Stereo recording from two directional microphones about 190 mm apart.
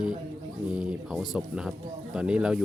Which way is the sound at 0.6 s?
5° right (ahead or behind).